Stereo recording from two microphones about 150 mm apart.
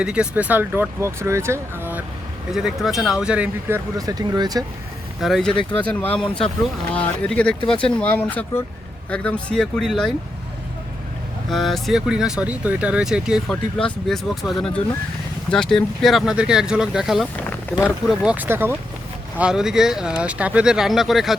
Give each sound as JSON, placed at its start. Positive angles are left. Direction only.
{"t": 0.0, "sound": "speech", "side_deg": -5}
{"t": 3.9, "sound": "speech", "side_deg": -25}
{"t": 5.2, "sound": "speech", "side_deg": 0}
{"t": 11.5, "sound": "speech", "side_deg": 0}
{"t": 17.5, "sound": "speech", "side_deg": 10}
{"t": 18.1, "sound": "speech", "side_deg": -5}